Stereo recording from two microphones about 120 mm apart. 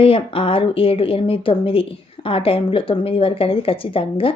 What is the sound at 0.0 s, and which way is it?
A woman's voice, 50° left (ahead or behind).